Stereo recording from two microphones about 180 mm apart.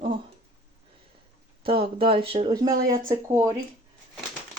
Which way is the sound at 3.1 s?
15° right (ahead or behind).